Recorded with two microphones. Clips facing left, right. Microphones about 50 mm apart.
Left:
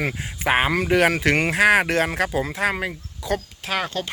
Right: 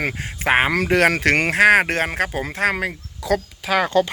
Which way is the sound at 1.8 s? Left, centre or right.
Right.